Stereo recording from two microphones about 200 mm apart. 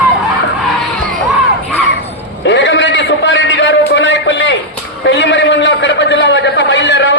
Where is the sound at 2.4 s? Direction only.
65° left (ahead or behind).